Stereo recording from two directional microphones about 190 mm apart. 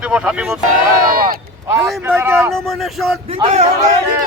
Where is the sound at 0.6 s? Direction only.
50° right (ahead or behind).